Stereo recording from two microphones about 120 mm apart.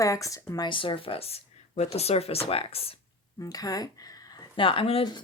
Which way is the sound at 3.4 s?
30° left (ahead or behind).